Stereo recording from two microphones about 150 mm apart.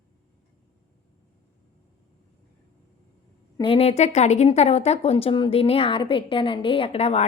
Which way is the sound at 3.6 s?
40° left (ahead or behind).